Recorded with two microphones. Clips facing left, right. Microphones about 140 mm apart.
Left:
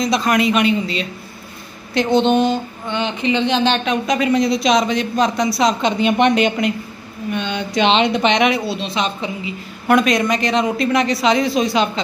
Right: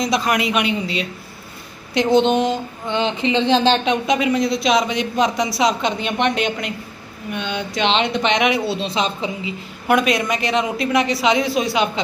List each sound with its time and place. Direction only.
0.0 s a woman's voice: 10° right (ahead or behind)
2.2 s speech: 25° left (ahead or behind)
2.9 s speech: 25° right (ahead or behind)
4.2 s speech: 5° right (ahead or behind)
8.6 s speech: 30° right (ahead or behind)
9.8 s a woman's voice: 5° right (ahead or behind)